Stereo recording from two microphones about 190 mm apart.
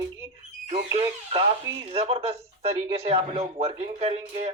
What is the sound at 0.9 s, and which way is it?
Speech, 30° right (ahead or behind).